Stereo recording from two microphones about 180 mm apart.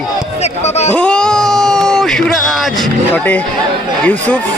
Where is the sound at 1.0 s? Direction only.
5° left (ahead or behind).